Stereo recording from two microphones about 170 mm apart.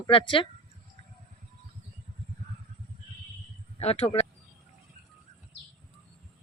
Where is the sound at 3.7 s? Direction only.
35° left (ahead or behind).